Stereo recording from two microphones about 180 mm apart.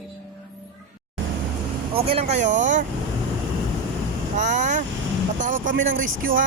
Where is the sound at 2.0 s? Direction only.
35° right (ahead or behind).